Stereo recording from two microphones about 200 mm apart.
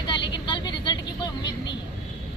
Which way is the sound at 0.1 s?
25° left (ahead or behind).